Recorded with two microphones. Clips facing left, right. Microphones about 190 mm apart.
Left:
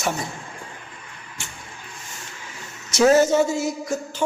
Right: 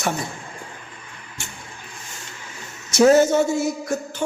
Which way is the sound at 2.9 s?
55° right (ahead or behind).